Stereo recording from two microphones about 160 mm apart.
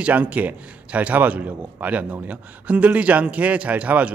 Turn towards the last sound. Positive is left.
turn(degrees=-10)  # may be behind; listen again after turning